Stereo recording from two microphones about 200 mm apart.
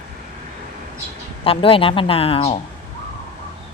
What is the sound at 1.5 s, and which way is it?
A woman's voice, 25° left (ahead or behind).